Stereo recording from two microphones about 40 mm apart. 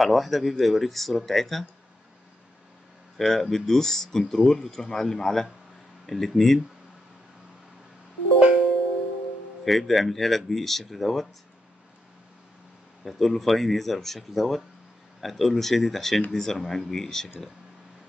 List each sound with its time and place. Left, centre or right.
0.0 s speech: centre
3.2 s speech: centre
8.4 s music: right
9.7 s speech: centre
13.0 s speech: centre